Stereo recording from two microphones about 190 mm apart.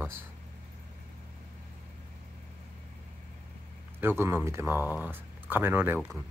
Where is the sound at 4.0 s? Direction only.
10° right (ahead or behind).